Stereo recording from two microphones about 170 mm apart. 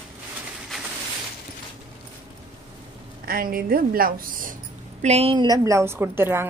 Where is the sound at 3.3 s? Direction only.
60° right (ahead or behind).